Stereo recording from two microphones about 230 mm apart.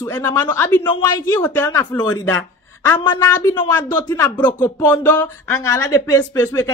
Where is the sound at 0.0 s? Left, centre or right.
Centre.